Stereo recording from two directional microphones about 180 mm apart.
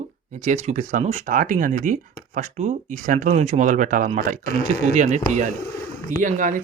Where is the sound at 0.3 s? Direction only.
40° right (ahead or behind).